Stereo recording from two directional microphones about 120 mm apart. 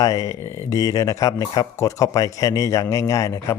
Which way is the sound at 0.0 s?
30° left (ahead or behind).